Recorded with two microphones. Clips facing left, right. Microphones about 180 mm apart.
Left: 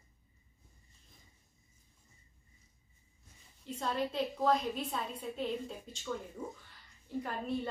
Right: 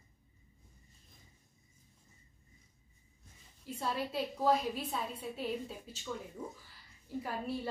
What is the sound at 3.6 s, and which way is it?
A woman's voice, 5° right (ahead or behind).